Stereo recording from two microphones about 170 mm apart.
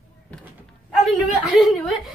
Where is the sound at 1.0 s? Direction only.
Centre (ahead or behind).